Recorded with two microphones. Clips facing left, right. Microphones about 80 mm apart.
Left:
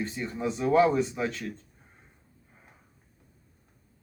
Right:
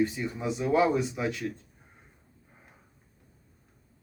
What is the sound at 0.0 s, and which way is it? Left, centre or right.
A man's voice, centre.